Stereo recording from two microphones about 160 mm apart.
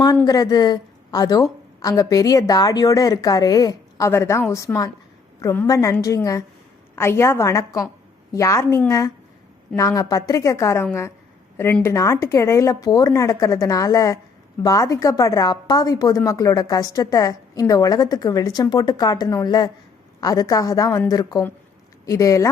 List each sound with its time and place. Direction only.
0.3 s a woman's voice: 25° left (ahead or behind)